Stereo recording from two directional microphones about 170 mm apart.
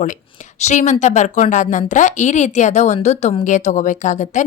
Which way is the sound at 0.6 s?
45° left (ahead or behind).